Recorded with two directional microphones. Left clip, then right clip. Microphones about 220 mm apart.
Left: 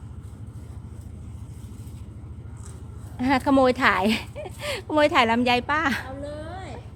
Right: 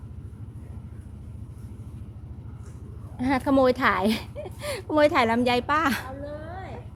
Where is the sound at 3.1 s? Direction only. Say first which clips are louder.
Left 2 dB; centre (ahead or behind).